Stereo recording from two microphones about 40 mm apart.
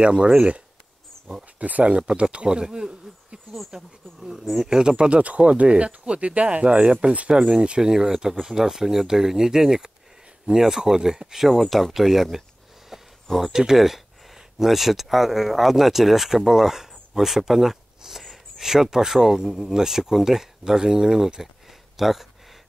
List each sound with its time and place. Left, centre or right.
0.0 s speech: right
1.6 s speech: right; by 3.3 s centre
3.5 s speech: centre
11.4 s speech: centre
12.9 s a sound: centre
13.4 s speech: centre
21.6 s a sound: centre